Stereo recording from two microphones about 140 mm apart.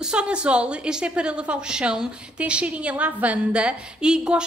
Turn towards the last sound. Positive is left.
turn(degrees=-5)  # may be behind; listen again after turning